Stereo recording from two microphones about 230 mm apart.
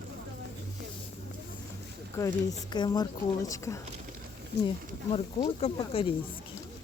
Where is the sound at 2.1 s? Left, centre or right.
Centre.